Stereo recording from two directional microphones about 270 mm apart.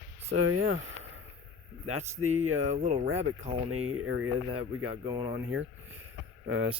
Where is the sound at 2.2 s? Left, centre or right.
Right.